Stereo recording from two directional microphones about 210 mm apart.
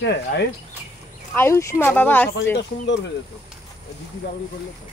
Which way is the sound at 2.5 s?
60° left (ahead or behind).